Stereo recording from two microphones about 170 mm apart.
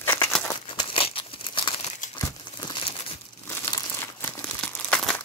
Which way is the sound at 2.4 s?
30° left (ahead or behind).